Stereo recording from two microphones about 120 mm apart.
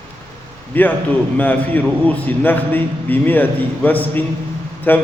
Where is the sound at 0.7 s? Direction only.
15° left (ahead or behind).